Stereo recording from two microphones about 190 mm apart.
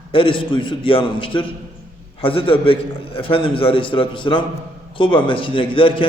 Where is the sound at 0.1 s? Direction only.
25° left (ahead or behind).